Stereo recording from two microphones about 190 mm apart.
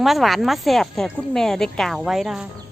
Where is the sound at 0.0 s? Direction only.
Centre (ahead or behind).